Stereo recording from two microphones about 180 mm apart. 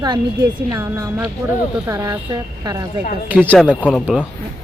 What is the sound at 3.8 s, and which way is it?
Speech, 5° left (ahead or behind).